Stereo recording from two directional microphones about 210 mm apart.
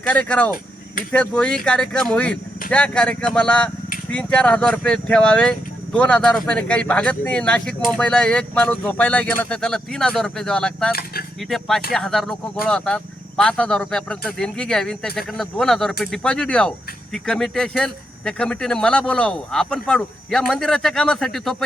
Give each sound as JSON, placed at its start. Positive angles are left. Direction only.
{"t": 0.0, "sound": "speech", "side_deg": 5}
{"t": 10.9, "sound": "speech", "side_deg": 45}
{"t": 11.3, "sound": "speech", "side_deg": 0}